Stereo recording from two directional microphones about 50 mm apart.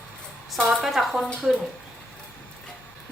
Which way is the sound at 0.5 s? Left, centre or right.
Centre.